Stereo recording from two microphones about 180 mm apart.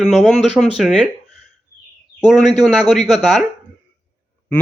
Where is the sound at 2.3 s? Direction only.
Centre (ahead or behind).